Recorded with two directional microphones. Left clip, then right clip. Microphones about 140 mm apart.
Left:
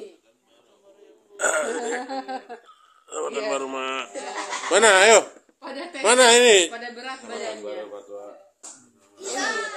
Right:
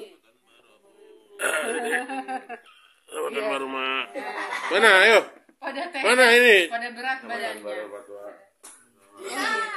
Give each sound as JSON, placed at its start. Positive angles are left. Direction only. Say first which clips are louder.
{"t": 1.3, "sound": "burping", "louder": "left 2 dB", "side_deg": 0}
{"t": 2.0, "sound": "speech", "louder": "even", "side_deg": -25}
{"t": 3.1, "sound": "a man's voice", "louder": "left 1 dB", "side_deg": -5}
{"t": 4.6, "sound": "speech", "louder": "left 1 dB", "side_deg": 15}
{"t": 7.0, "sound": "a man's voice", "louder": "right 6 dB", "side_deg": -90}